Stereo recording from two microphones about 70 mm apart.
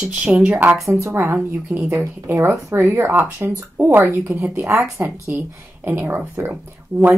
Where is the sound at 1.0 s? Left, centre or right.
Right.